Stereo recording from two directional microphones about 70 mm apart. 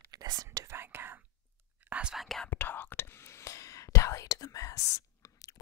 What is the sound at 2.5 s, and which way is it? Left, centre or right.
Whispering, left.